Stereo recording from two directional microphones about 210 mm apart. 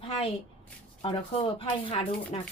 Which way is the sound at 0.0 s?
25° left (ahead or behind).